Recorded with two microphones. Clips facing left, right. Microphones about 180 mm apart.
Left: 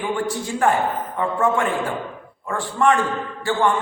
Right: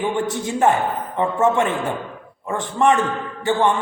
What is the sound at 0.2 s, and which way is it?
A man's voice, 20° right (ahead or behind).